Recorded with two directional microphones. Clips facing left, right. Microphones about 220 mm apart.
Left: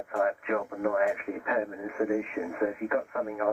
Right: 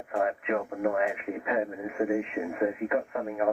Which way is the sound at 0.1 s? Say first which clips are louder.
Even; 20° right (ahead or behind).